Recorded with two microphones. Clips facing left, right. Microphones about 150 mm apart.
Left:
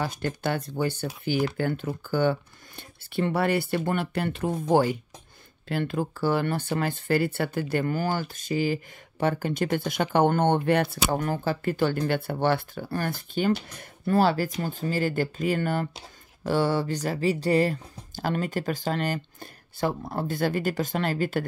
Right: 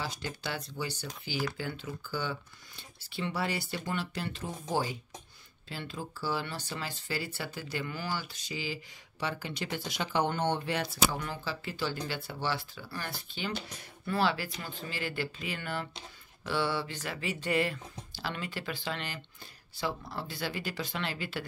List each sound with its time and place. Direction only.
0.0 s speech: 55° left (ahead or behind)